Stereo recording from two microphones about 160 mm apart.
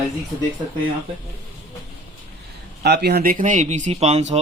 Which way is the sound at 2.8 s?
90° right.